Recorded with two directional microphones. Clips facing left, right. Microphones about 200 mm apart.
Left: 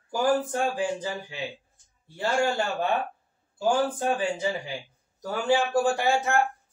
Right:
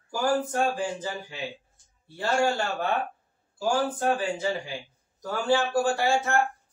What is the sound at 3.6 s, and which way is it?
Speech, 15° left (ahead or behind).